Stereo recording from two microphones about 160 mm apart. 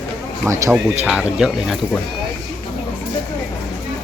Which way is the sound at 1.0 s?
5° right (ahead or behind).